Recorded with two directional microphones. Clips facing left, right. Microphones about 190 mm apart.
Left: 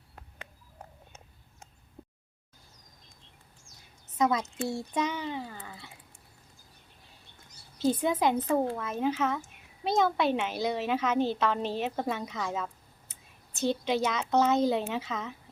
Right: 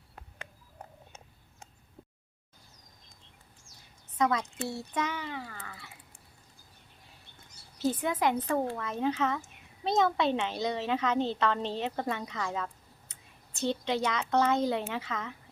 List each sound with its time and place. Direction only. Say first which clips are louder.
4.2 s a woman's voice: left 2 dB; 10° left (ahead or behind)
8.1 s a woman's voice: left 2 dB; 10° left (ahead or behind)
13.6 s a woman's voice: left 2 dB; 15° left (ahead or behind)